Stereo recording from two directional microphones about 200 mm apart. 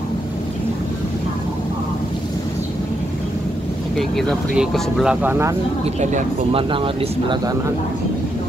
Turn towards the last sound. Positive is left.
turn(degrees=-25)  # may be behind; listen again after turning